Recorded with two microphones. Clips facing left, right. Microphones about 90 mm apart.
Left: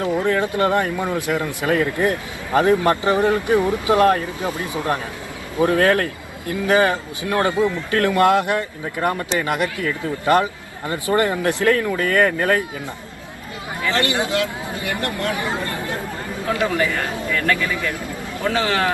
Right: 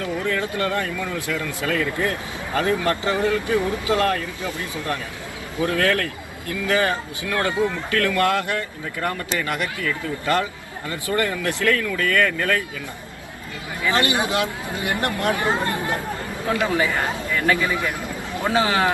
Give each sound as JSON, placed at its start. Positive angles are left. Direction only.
{"t": 0.0, "sound": "a sound", "side_deg": 20}
{"t": 0.4, "sound": "speech", "side_deg": 20}
{"t": 4.1, "sound": "speech", "side_deg": 30}
{"t": 5.6, "sound": "speech", "side_deg": 25}
{"t": 13.8, "sound": "speech", "side_deg": -20}